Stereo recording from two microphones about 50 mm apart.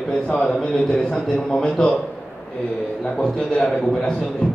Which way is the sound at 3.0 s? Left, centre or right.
Centre.